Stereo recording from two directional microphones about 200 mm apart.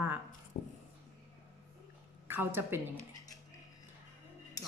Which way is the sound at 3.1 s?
20° left (ahead or behind).